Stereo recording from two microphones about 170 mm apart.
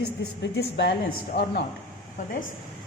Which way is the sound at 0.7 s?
75° left (ahead or behind).